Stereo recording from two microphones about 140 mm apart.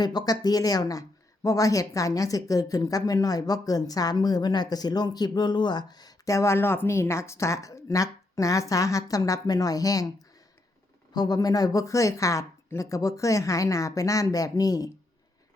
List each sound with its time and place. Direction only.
0.0 s a woman's voice: 30° left (ahead or behind)
11.1 s a woman's voice: 30° left (ahead or behind)